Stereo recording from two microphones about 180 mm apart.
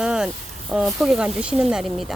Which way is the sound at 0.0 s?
5° right (ahead or behind).